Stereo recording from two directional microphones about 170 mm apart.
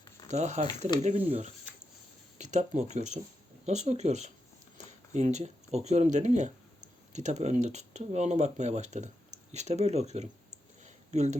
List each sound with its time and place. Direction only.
0.3 s speech: 45° right (ahead or behind)
2.4 s speech: 45° right (ahead or behind)
10.8 s a sound: 45° right (ahead or behind)